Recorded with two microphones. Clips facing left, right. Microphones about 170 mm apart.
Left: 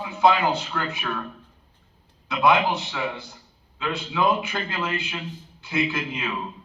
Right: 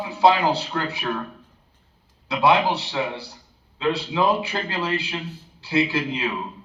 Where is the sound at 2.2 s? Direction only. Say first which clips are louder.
Right 1 dB; 35° right (ahead or behind).